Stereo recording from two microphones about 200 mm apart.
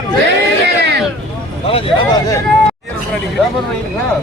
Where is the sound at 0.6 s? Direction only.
55° right (ahead or behind).